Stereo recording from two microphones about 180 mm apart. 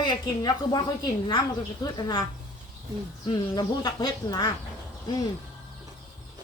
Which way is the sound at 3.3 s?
20° left (ahead or behind).